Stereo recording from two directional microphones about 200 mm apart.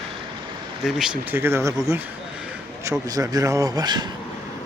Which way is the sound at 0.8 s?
5° right (ahead or behind).